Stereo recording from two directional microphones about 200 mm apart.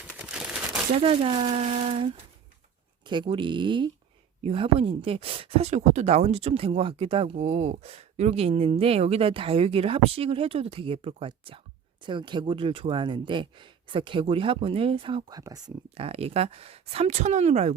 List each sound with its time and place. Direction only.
0.2 s crumpling: 5° right (ahead or behind)
0.9 s speech: 30° right (ahead or behind)
3.1 s speech: 25° right (ahead or behind)